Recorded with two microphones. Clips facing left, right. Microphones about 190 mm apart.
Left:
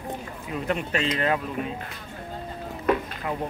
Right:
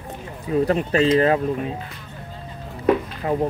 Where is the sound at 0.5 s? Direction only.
35° right (ahead or behind).